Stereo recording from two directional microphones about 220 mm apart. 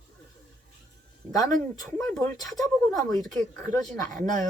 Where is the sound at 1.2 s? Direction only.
15° right (ahead or behind).